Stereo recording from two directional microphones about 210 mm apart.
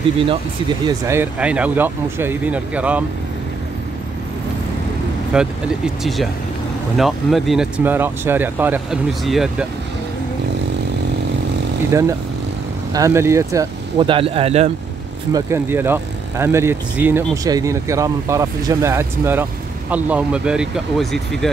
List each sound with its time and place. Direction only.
0.8 s speech: 10° right (ahead or behind)
5.3 s speech: 5° right (ahead or behind)
7.0 s speech: centre (ahead or behind)
11.9 s speech: 15° right (ahead or behind)
15.3 s speech: 10° right (ahead or behind)